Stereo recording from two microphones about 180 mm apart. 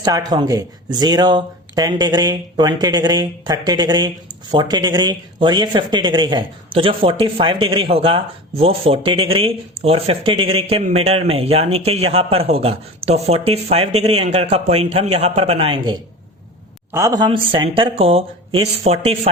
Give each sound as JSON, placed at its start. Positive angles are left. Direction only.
{"t": 0.0, "sound": "speech", "side_deg": -20}
{"t": 16.9, "sound": "speech", "side_deg": -20}